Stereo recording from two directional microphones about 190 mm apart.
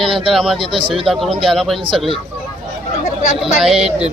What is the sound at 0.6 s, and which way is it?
Speech, 25° right (ahead or behind).